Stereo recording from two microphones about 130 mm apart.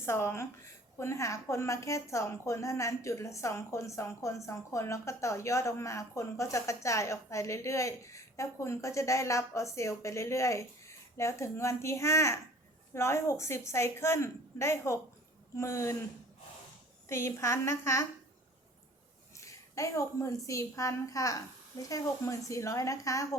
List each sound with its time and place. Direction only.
0.0 s speech: 20° left (ahead or behind)
17.1 s speech: 20° left (ahead or behind)
19.4 s speech: 25° left (ahead or behind)